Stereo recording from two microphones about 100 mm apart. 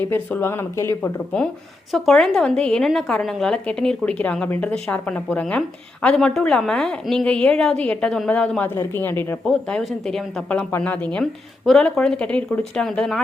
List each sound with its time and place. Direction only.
0.0 s speech: 20° left (ahead or behind)
1.0 s a woman's voice: 15° left (ahead or behind)
8.7 s speech: 25° left (ahead or behind)
9.4 s speech: 5° left (ahead or behind)
10.7 s a woman's voice: 15° left (ahead or behind)
11.2 s speech: 5° left (ahead or behind)